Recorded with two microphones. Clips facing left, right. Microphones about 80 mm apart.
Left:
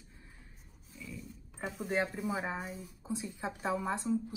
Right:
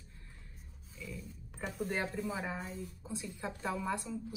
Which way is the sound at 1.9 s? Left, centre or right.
Centre.